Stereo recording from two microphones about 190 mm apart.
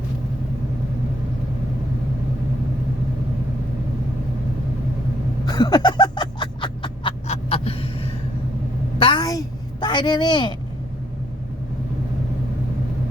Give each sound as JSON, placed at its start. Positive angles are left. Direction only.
{"t": 5.5, "sound": "snicker", "side_deg": 20}
{"t": 9.0, "sound": "a sound", "side_deg": 25}
{"t": 9.8, "sound": "speech", "side_deg": 25}